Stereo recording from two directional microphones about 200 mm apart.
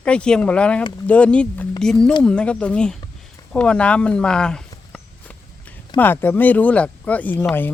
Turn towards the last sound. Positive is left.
turn(degrees=10)  # may be behind; listen again after turning